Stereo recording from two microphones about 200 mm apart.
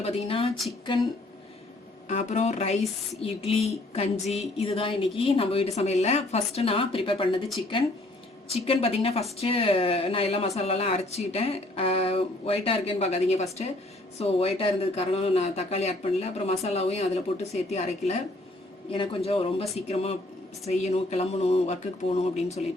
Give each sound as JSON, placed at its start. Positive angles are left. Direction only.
{"t": 0.0, "sound": "speech", "side_deg": 25}
{"t": 2.0, "sound": "speech", "side_deg": 35}